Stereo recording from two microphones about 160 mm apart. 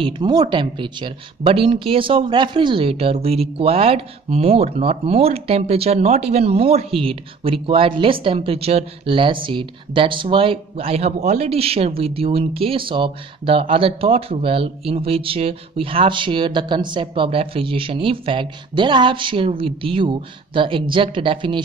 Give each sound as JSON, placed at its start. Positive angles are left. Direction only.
{"t": 0.0, "sound": "speech", "side_deg": -30}